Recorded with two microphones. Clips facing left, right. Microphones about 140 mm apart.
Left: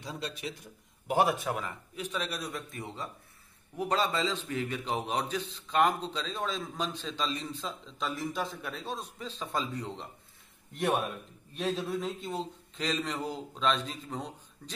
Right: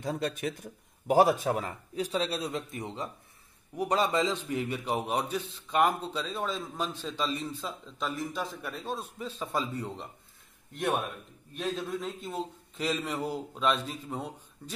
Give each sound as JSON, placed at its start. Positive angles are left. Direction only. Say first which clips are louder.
{"t": 0.0, "sound": "a man's voice", "louder": "right 7 dB", "side_deg": -50}
{"t": 11.7, "sound": "a man's voice", "louder": "left 1 dB", "side_deg": 0}